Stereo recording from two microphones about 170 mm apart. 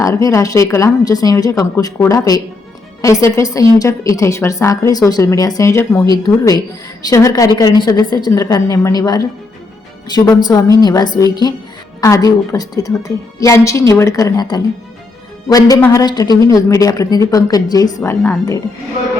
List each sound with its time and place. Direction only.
0.0 s a woman's voice: 20° left (ahead or behind)